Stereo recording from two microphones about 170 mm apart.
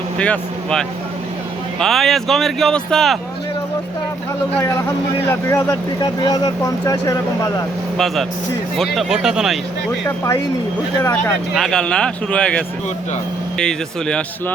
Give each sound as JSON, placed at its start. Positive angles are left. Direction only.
{"t": 0.2, "sound": "speech", "side_deg": 5}
{"t": 5.3, "sound": "speech", "side_deg": 15}
{"t": 7.9, "sound": "speech", "side_deg": 0}
{"t": 10.9, "sound": "speech", "side_deg": 15}
{"t": 11.5, "sound": "speech", "side_deg": 5}